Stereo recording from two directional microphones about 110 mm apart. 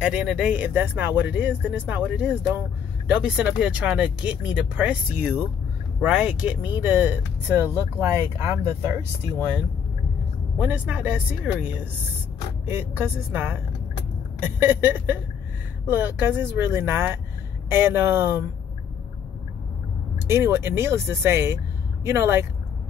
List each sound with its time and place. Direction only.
0.0 s speech: 5° right (ahead or behind); by 9.0 s 20° right (ahead or behind)
10.6 s speech: 15° right (ahead or behind)
20.2 s speech: 25° right (ahead or behind)